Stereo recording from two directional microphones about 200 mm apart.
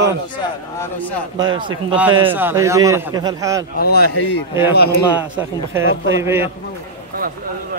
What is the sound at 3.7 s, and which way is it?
Speech, 50° left (ahead or behind).